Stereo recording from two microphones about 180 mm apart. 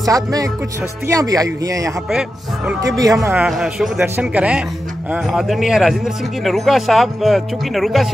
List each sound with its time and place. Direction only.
0.0 s speech: 20° right (ahead or behind)
2.0 s speech: 5° right (ahead or behind)
3.0 s speech: 20° right (ahead or behind)
3.3 s speech: 5° right (ahead or behind)